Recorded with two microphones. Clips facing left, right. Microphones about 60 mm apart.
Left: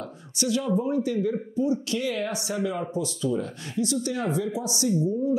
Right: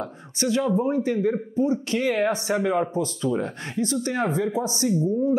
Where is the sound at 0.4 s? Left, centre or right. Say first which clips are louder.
Right 3 dB; right.